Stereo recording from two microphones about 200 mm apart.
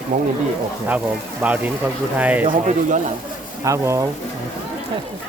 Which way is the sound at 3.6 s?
15° right (ahead or behind).